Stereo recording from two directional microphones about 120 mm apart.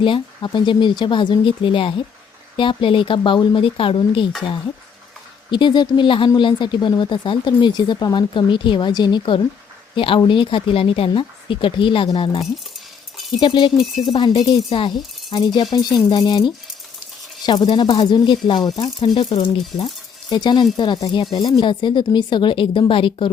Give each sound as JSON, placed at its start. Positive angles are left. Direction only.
{"t": 0.0, "sound": "speech", "side_deg": 45}
{"t": 5.5, "sound": "speech", "side_deg": 40}
{"t": 17.4, "sound": "speech", "side_deg": 40}
{"t": 20.3, "sound": "speech", "side_deg": 35}
{"t": 21.6, "sound": "speech", "side_deg": 40}